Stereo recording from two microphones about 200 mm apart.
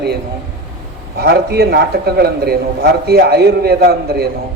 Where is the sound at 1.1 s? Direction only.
50° right (ahead or behind).